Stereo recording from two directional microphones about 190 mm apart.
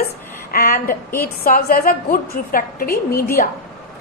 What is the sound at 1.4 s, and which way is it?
A woman's voice, 50° left (ahead or behind).